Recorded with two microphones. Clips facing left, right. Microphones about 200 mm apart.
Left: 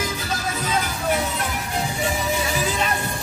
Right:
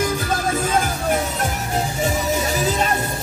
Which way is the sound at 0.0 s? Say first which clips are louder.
Right 6 dB; 50° right (ahead or behind).